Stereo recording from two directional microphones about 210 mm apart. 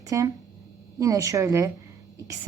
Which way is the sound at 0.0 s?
15° right (ahead or behind).